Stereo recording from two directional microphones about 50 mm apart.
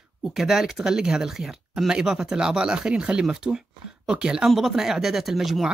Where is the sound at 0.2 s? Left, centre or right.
Centre.